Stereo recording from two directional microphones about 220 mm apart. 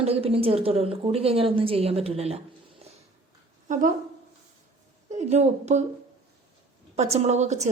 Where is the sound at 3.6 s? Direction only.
35° right (ahead or behind).